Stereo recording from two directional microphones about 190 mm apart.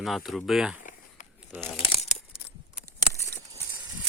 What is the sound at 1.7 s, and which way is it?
Crumpling, 35° left (ahead or behind).